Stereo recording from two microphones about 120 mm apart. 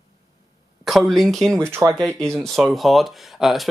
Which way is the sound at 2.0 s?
5° left (ahead or behind).